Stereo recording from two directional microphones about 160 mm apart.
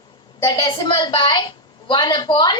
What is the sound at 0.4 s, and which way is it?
A woman's voice, 25° left (ahead or behind).